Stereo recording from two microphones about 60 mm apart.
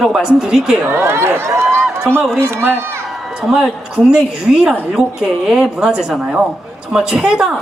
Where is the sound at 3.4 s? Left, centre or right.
Centre.